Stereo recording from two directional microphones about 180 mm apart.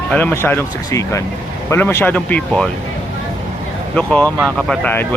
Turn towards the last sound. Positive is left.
turn(degrees=10)  # may be behind; listen again after turning